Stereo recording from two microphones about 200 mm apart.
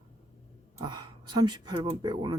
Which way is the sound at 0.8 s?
20° right (ahead or behind).